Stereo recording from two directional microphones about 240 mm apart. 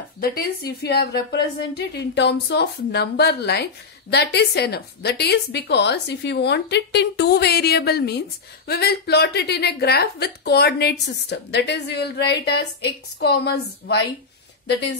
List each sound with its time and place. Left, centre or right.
0.2 s a woman's voice: left